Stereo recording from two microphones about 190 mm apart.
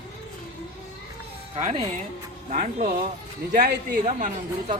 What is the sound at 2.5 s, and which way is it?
Speech, 40° right (ahead or behind).